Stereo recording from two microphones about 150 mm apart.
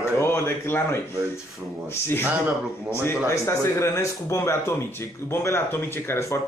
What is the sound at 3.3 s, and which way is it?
Speech, 20° left (ahead or behind).